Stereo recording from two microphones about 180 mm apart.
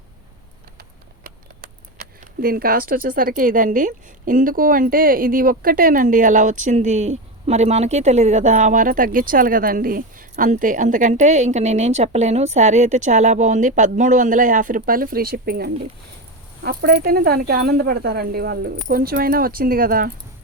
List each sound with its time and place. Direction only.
0.8 s speech: 55° right (ahead or behind)